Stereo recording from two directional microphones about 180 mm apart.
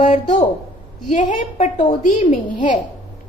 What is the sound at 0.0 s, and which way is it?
Speech, 40° left (ahead or behind).